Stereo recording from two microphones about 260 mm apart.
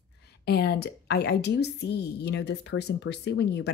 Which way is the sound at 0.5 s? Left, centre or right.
Left.